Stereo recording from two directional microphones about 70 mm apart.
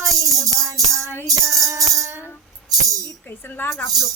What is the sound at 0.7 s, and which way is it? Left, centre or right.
Music, right.